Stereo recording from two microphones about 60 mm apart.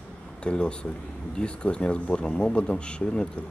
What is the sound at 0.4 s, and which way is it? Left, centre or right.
Speech, centre.